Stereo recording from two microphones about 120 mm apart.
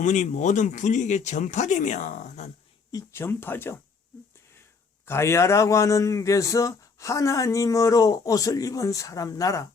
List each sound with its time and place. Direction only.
0.0 s speech: 85° left
2.9 s a man's voice: 20° left (ahead or behind)
5.0 s a man's voice: 20° left (ahead or behind)